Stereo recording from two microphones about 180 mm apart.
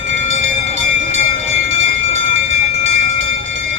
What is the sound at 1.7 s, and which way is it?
Train, 90° right.